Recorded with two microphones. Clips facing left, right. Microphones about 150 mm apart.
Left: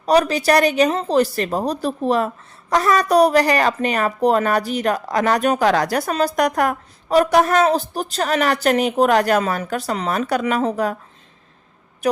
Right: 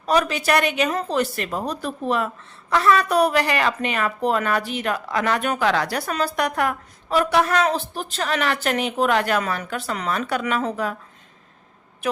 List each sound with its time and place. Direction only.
0.0 s a woman's voice: 35° left (ahead or behind)